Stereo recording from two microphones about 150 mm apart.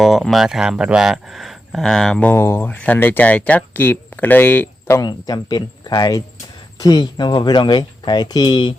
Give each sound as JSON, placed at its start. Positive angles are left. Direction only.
{"t": 0.0, "sound": "speech", "side_deg": 0}
{"t": 5.0, "sound": "speech", "side_deg": 25}